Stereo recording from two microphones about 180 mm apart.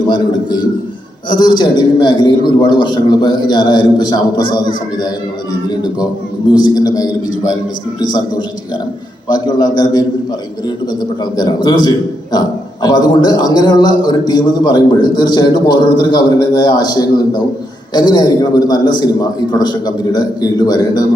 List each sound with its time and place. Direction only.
1.4 s a man's voice: 25° left (ahead or behind)
6.7 s a man's voice: 20° left (ahead or behind)
9.3 s a man's voice: 20° left (ahead or behind)
11.2 s a man's voice: 25° left (ahead or behind)